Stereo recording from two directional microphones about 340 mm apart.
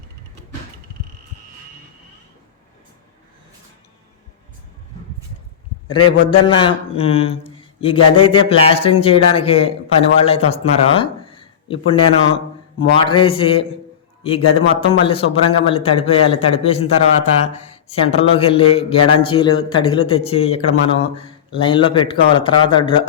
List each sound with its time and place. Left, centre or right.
6.1 s a man's voice: centre
18.0 s a man's voice: centre